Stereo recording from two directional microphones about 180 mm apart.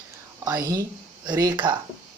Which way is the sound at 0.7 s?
20° right (ahead or behind).